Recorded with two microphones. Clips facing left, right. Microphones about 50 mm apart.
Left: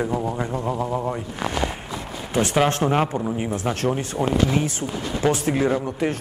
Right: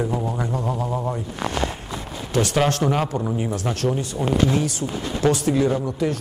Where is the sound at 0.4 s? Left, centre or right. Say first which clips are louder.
Even; left.